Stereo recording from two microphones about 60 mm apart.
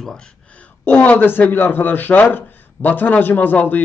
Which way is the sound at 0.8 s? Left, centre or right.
Left.